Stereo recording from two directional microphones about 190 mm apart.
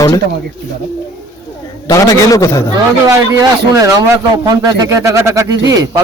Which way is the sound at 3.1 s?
15° right (ahead or behind).